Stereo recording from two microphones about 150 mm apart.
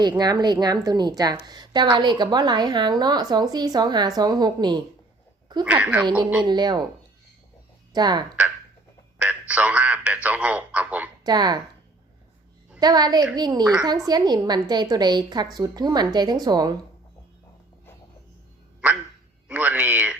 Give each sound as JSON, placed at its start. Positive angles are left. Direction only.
{"t": 0.0, "sound": "a woman's voice", "side_deg": -30}
{"t": 5.6, "sound": "a man's voice", "side_deg": -10}
{"t": 6.4, "sound": "a woman's voice", "side_deg": -30}
{"t": 7.9, "sound": "a woman's voice", "side_deg": -30}
{"t": 9.1, "sound": "a sound", "side_deg": -10}
{"t": 10.2, "sound": "a man's voice", "side_deg": -10}
{"t": 11.2, "sound": "speech", "side_deg": -25}
{"t": 12.8, "sound": "a woman's voice", "side_deg": -25}
{"t": 19.5, "sound": "a man's voice", "side_deg": -10}